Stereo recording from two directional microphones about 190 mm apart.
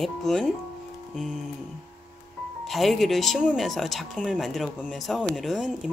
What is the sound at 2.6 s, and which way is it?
Speech, centre (ahead or behind).